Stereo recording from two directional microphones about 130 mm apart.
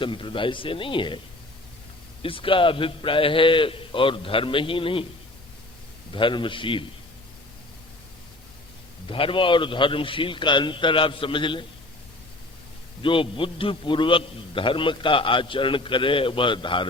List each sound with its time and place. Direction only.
0.0 s a man's voice: 40° left (ahead or behind)
2.2 s a man's voice: 45° left (ahead or behind)
6.1 s a man's voice: 40° left (ahead or behind)
9.0 s a man's voice: 45° left (ahead or behind)
13.0 s a man's voice: 40° left (ahead or behind)